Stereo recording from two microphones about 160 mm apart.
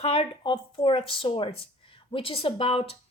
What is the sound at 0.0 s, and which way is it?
Speech, 35° left (ahead or behind).